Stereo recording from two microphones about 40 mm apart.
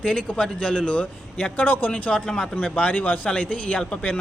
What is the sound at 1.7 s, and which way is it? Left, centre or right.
Speech, left.